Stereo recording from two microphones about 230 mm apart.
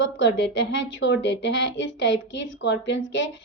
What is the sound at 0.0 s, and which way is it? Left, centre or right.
A woman's voice, left.